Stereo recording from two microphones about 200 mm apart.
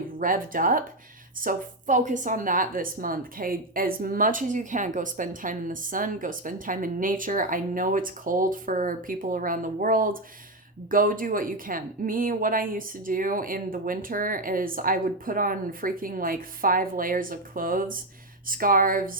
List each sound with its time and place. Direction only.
0.2 s a woman's voice: 45° right (ahead or behind)